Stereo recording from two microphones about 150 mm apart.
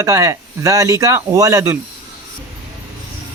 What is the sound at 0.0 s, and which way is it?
Speech, 20° right (ahead or behind).